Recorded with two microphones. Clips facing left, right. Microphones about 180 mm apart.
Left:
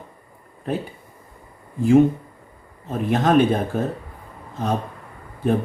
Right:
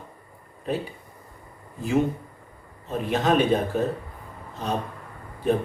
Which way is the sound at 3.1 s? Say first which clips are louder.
Left 3 dB; 50° left (ahead or behind).